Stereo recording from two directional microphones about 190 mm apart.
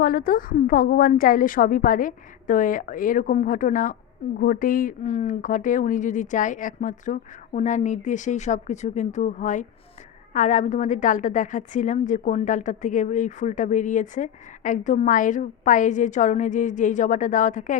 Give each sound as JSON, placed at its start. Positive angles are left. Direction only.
{"t": 0.0, "sound": "a woman's voice", "side_deg": 50}